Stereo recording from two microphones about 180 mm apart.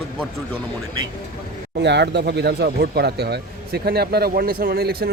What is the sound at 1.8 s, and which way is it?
Speech, 70° right (ahead or behind).